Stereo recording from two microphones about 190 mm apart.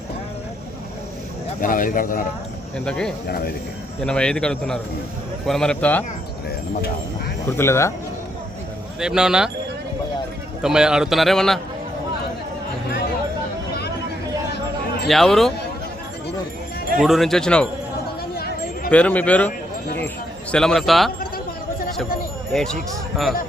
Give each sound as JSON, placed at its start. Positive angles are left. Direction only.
{"t": 1.6, "sound": "speech", "side_deg": 45}
{"t": 2.7, "sound": "a man's voice", "side_deg": 5}
{"t": 3.2, "sound": "speech", "side_deg": 55}
{"t": 4.0, "sound": "a man's voice", "side_deg": 5}
{"t": 7.5, "sound": "speech", "side_deg": 15}
{"t": 9.0, "sound": "a man's voice", "side_deg": -5}
{"t": 10.6, "sound": "a man's voice", "side_deg": -5}
{"t": 15.0, "sound": "a man's voice", "side_deg": 0}
{"t": 17.0, "sound": "a man's voice", "side_deg": 0}
{"t": 18.3, "sound": "a sound", "side_deg": 50}
{"t": 18.9, "sound": "speech", "side_deg": 5}
{"t": 20.5, "sound": "a man's voice", "side_deg": 5}
{"t": 21.2, "sound": "a sound", "side_deg": 50}
{"t": 22.5, "sound": "a man's voice", "side_deg": 5}